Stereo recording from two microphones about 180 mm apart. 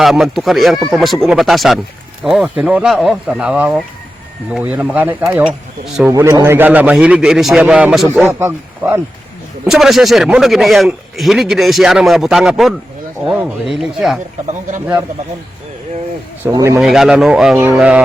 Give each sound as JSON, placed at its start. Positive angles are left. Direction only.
{"t": 0.0, "sound": "a man's voice", "side_deg": 0}
{"t": 9.6, "sound": "a man's voice", "side_deg": 0}
{"t": 16.5, "sound": "a man's voice", "side_deg": -15}
{"t": 16.8, "sound": "a man's voice", "side_deg": 0}